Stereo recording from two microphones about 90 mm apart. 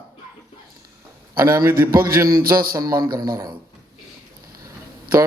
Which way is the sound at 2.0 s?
45° right (ahead or behind).